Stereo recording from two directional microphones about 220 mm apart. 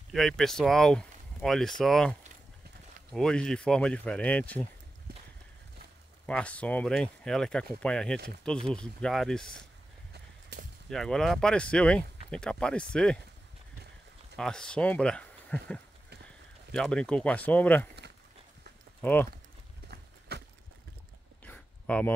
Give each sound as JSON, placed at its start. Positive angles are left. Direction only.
{"t": 0.1, "sound": "speech", "side_deg": 0}
{"t": 6.2, "sound": "speech", "side_deg": 5}
{"t": 10.9, "sound": "speech", "side_deg": 0}
{"t": 14.3, "sound": "speech", "side_deg": 5}
{"t": 18.9, "sound": "speech", "side_deg": 10}
{"t": 19.9, "sound": "horse", "side_deg": -50}
{"t": 21.5, "sound": "a sound", "side_deg": 5}